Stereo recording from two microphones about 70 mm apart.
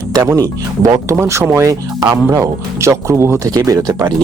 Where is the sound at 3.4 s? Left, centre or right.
Right.